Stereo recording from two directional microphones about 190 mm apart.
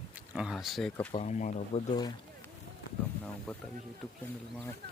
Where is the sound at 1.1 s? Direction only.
40° left (ahead or behind).